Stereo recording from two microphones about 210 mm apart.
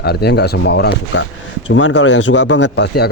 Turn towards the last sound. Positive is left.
turn(degrees=50)  # may be behind; listen again after turning